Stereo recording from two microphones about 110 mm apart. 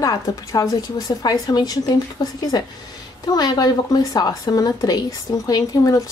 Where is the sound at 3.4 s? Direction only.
35° left (ahead or behind).